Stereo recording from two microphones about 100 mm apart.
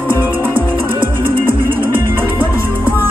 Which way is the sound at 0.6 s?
55° right (ahead or behind).